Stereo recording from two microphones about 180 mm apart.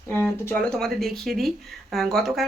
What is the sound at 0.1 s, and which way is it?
Speech, 10° left (ahead or behind).